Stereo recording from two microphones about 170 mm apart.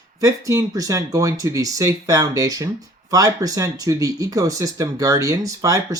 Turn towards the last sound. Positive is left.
turn(degrees=-20)  # may be behind; listen again after turning